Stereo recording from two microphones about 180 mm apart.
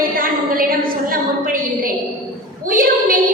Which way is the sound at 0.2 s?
50° right (ahead or behind).